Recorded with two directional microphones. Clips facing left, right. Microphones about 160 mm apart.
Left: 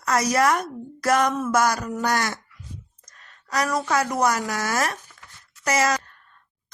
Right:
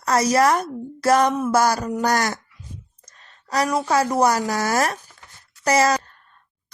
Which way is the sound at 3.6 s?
30° right (ahead or behind).